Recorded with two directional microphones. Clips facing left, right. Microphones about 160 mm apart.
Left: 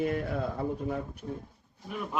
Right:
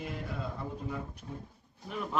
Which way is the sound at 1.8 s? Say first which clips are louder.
Left 1 dB; 5° left (ahead or behind).